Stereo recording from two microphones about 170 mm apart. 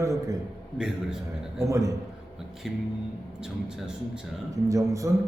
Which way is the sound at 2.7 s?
Centre (ahead or behind).